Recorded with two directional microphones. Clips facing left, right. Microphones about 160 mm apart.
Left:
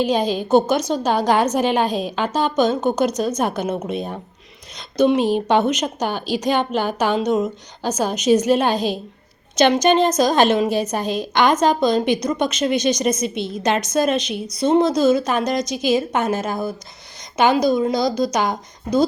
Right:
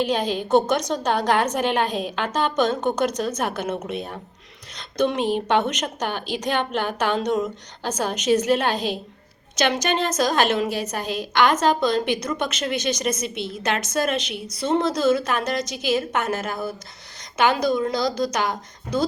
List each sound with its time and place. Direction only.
0.0 s a woman's voice: 10° left (ahead or behind)